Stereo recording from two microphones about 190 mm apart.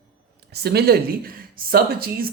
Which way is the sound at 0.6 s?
55° right (ahead or behind).